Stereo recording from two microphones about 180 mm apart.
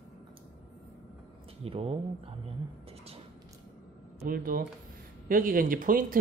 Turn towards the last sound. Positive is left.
turn(degrees=-50)  # may be behind; listen again after turning